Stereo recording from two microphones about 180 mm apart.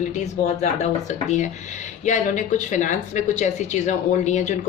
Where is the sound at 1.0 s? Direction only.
40° left (ahead or behind).